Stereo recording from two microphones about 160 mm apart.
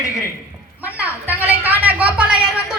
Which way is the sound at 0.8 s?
10° right (ahead or behind).